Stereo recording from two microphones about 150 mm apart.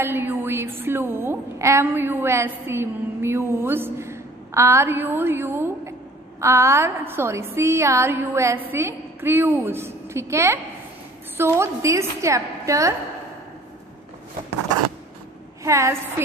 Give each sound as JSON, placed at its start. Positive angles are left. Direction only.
{"t": 0.0, "sound": "a woman's voice", "side_deg": -15}
{"t": 15.6, "sound": "a woman's voice", "side_deg": -20}